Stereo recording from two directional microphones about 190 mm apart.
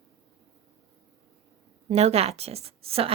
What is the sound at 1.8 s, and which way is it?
A woman's voice, 35° right (ahead or behind).